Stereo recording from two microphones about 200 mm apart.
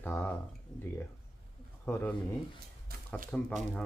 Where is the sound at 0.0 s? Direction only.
10° left (ahead or behind).